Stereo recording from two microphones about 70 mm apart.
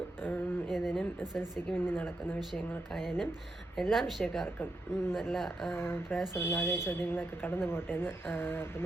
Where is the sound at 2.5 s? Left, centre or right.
Centre.